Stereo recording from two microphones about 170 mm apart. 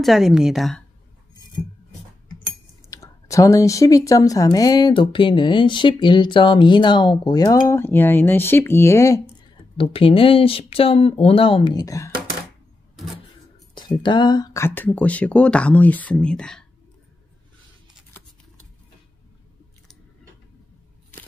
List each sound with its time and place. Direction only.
0.0 s a woman's voice: centre (ahead or behind)
2.9 s speech: 20° left (ahead or behind)
9.8 s speech: 30° left (ahead or behind)
13.7 s speech: 25° left (ahead or behind); by 16.6 s 5° left (ahead or behind)